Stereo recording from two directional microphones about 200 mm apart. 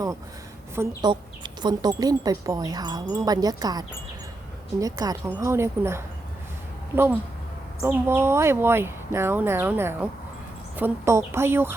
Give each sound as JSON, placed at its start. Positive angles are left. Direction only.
{"t": 0.8, "sound": "chime", "side_deg": -20}
{"t": 4.8, "sound": "speech", "side_deg": -15}